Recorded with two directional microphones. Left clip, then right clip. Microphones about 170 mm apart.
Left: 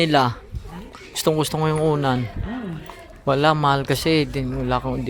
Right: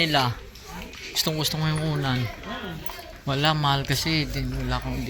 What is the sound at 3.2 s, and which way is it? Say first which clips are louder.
A man's voice: left 6 dB; 40° left (ahead or behind).